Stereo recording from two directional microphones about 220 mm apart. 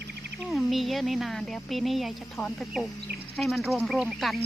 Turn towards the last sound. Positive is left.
turn(degrees=0)  # may be behind; listen again after turning